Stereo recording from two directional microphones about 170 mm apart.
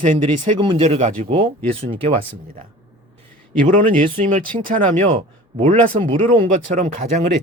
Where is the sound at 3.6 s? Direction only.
50° right (ahead or behind).